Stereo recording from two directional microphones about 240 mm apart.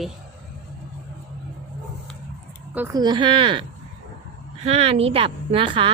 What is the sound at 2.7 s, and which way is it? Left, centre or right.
A woman's voice, centre.